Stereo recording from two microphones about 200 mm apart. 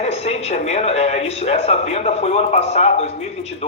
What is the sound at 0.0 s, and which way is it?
Speech, 30° left (ahead or behind).